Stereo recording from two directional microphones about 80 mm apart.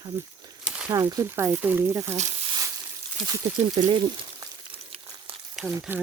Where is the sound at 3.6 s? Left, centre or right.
Right.